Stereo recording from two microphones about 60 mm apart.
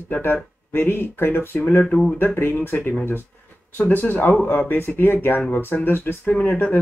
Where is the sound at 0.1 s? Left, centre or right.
Left.